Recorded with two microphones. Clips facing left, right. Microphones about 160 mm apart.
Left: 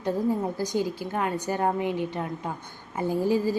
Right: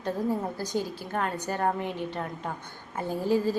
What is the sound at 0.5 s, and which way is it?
A woman's voice, 15° left (ahead or behind).